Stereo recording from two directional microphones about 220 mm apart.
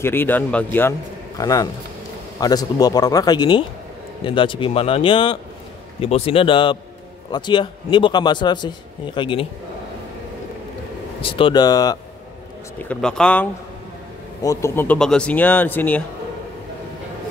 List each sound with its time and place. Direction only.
0.0 s a man's voice: 10° left (ahead or behind)
11.1 s a man's voice: 25° left (ahead or behind)
12.8 s speech: 5° left (ahead or behind)